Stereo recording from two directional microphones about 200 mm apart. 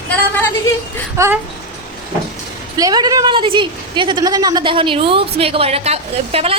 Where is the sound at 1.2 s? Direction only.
15° right (ahead or behind).